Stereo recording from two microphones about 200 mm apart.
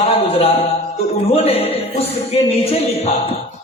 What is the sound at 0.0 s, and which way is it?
A man's voice, 30° left (ahead or behind).